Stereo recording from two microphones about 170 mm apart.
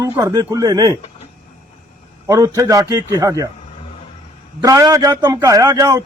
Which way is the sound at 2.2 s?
20° right (ahead or behind).